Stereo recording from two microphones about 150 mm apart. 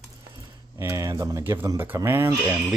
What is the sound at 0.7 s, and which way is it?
Speech, 20° right (ahead or behind).